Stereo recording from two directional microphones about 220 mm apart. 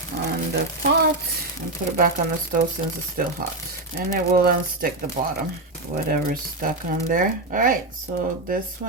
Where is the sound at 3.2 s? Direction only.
40° right (ahead or behind).